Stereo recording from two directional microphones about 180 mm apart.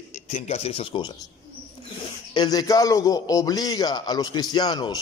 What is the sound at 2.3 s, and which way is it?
A man's voice, 25° left (ahead or behind).